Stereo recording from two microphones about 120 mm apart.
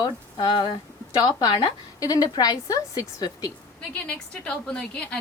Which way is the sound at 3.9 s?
10° left (ahead or behind).